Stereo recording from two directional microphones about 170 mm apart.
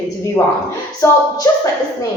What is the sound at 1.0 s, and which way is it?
Speech, 20° left (ahead or behind).